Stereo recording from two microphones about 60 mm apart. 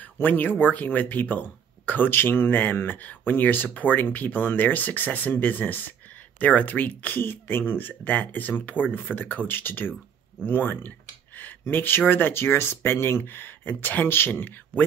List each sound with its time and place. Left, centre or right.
0.0 s speech: left